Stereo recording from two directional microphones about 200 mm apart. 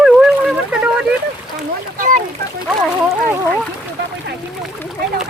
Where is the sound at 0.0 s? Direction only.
5° right (ahead or behind).